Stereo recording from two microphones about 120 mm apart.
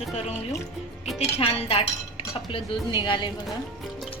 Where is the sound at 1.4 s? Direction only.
55° left (ahead or behind).